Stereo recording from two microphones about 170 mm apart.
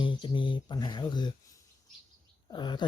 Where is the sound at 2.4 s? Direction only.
25° left (ahead or behind).